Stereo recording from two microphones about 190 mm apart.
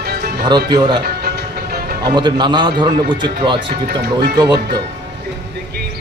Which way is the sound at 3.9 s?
55° right (ahead or behind).